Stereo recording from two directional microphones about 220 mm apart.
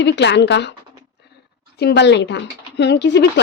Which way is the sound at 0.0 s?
50° left (ahead or behind).